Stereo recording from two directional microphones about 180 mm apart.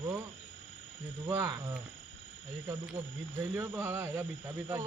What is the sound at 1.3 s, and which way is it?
Speech, 25° right (ahead or behind).